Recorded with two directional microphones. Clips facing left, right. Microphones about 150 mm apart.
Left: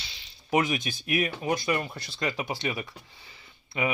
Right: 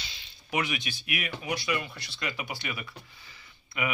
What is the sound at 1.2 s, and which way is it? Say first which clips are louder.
Speech: left 10 dB; 30° left (ahead or behind).